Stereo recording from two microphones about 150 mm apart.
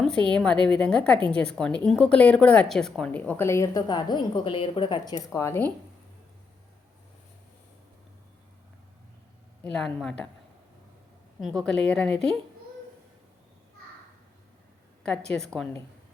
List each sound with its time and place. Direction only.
0.0 s speech: 5° left (ahead or behind)
9.7 s a woman's voice: 5° left (ahead or behind)
11.3 s a woman's voice: centre (ahead or behind)